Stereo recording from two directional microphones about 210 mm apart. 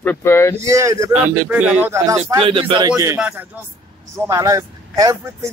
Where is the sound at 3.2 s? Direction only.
5° right (ahead or behind).